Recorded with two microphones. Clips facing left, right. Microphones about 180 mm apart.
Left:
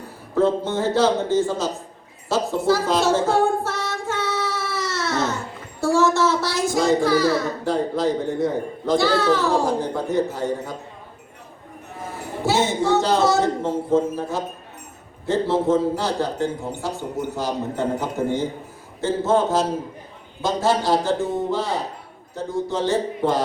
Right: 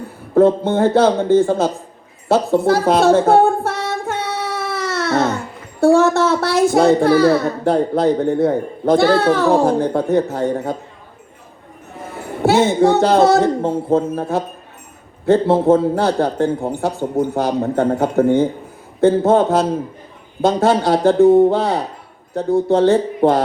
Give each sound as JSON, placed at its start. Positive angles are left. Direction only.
{"t": 0.3, "sound": "speech", "side_deg": -55}
{"t": 2.3, "sound": "singing", "side_deg": -55}
{"t": 5.8, "sound": "speech", "side_deg": -60}
{"t": 12.4, "sound": "speech", "side_deg": -60}